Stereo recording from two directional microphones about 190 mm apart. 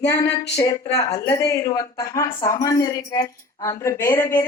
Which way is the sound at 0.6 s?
15° left (ahead or behind).